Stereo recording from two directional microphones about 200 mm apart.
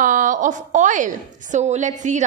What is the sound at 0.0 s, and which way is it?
A woman's voice, 40° right (ahead or behind).